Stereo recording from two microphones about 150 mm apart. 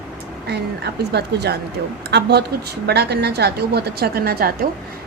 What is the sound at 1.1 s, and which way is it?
A woman's voice, 90° right.